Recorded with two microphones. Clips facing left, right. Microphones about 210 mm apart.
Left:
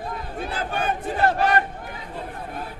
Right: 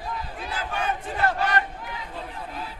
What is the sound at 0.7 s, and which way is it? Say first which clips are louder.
Crowd: left 2 dB; 30° left (ahead or behind).